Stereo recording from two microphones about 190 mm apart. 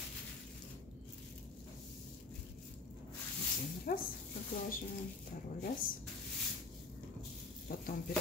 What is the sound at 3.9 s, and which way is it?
Speech, 50° left (ahead or behind).